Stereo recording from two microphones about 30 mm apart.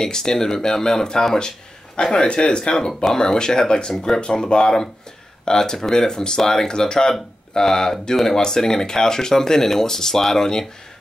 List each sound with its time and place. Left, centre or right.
0.0 s speech: left
2.0 s speech: left
3.0 s speech: centre